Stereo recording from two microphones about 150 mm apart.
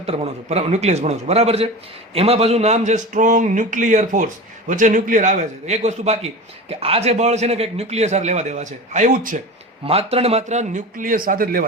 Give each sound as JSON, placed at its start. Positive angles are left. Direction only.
{"t": 0.0, "sound": "a man's voice", "side_deg": -40}
{"t": 9.8, "sound": "a man's voice", "side_deg": -40}